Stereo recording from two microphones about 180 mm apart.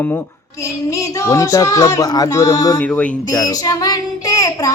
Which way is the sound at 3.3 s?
20° left (ahead or behind).